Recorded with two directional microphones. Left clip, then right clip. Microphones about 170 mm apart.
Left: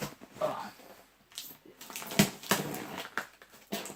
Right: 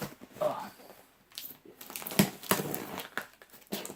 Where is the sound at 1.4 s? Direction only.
35° right (ahead or behind).